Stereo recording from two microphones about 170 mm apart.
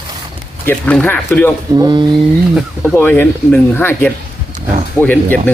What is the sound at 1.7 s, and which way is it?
Speech, 25° right (ahead or behind).